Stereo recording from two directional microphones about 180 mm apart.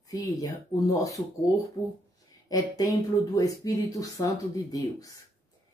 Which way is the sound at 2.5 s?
20° left (ahead or behind).